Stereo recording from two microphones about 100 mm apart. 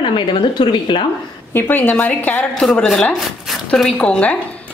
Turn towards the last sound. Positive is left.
turn(degrees=15)  # may be behind; listen again after turning